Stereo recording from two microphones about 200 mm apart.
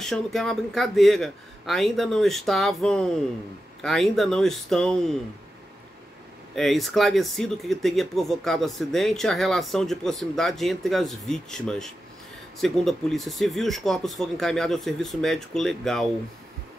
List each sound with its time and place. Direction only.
0.0 s speech: centre (ahead or behind)
6.5 s speech: centre (ahead or behind)